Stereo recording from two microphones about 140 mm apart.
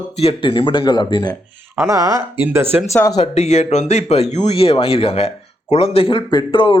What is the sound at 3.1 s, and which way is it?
Speech, 50° left (ahead or behind).